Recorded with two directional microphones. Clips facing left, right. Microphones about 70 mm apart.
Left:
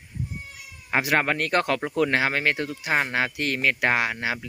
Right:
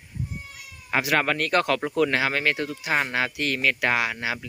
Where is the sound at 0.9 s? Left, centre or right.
Left.